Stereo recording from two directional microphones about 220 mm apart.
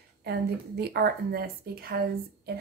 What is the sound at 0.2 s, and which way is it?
A woman's voice, 50° right (ahead or behind).